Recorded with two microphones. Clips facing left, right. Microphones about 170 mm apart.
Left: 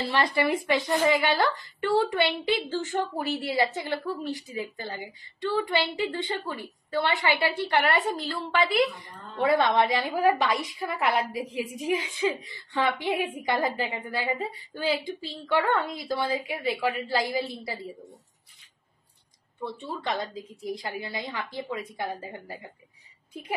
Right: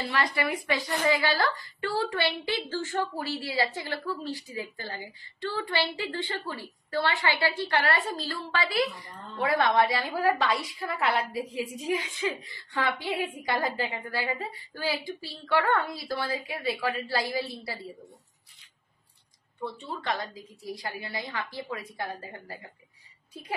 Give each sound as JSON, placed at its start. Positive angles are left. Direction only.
{"t": 0.2, "sound": "a woman's voice", "side_deg": 25}
{"t": 19.6, "sound": "a woman's voice", "side_deg": 20}